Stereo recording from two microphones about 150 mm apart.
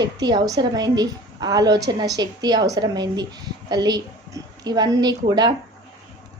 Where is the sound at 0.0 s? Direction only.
25° right (ahead or behind).